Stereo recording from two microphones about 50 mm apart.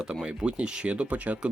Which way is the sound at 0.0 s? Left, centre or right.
Centre.